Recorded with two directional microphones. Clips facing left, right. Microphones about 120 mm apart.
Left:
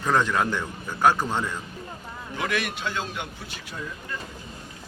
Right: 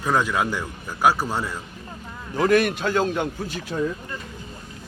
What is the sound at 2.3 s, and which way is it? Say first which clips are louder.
A man's voice: right 10 dB; 40° right (ahead or behind).